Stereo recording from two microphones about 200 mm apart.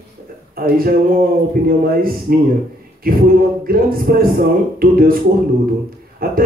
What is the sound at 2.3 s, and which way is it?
Speech, 50° right (ahead or behind).